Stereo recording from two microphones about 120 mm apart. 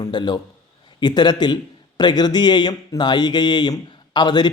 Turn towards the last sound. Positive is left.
turn(degrees=35)  # may be behind; listen again after turning